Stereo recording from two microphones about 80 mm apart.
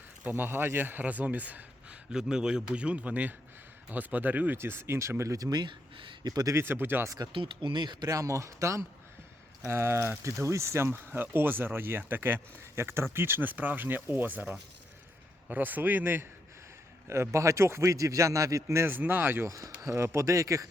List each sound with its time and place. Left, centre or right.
0.3 s speech: right
5.5 s speech: right
6.2 s speech: right
6.6 s speech: right
7.3 s speech: right
8.0 s speech: right
15.4 s speech: right
17.1 s speech: right
18.9 s speech: right
19.5 s speech: right